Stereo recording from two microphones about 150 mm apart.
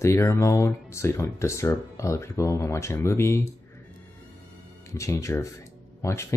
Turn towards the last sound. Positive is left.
turn(degrees=20)  # may be behind; listen again after turning